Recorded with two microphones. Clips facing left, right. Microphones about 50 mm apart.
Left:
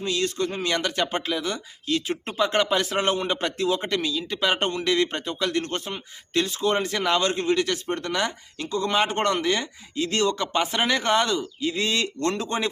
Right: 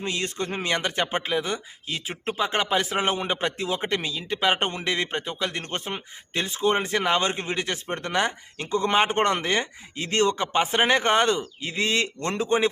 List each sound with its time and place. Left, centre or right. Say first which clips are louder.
0.0 s a man's voice: left 3 dB; right